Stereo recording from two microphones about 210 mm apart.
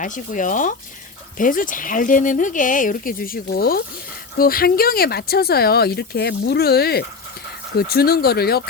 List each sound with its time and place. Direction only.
0.0 s speech: 40° left (ahead or behind)